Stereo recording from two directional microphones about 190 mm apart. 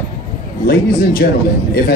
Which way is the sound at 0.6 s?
55° left (ahead or behind).